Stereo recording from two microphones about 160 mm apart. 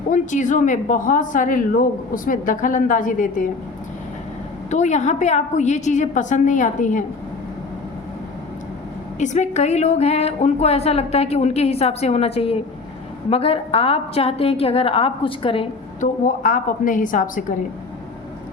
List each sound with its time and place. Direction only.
0.1 s a woman's voice: 50° left (ahead or behind)
4.7 s a woman's voice: 45° left (ahead or behind)
9.1 s a woman's voice: 50° left (ahead or behind)
16.0 s a woman's voice: 55° left (ahead or behind)